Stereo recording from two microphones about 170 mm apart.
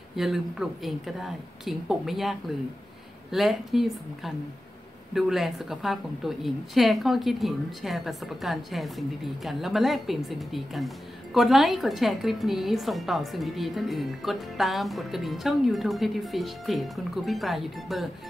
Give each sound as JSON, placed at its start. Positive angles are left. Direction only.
{"t": 0.1, "sound": "a woman's voice", "side_deg": 0}